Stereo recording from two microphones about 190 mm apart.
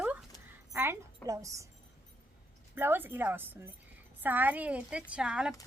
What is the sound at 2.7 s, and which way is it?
A woman's voice, 10° right (ahead or behind).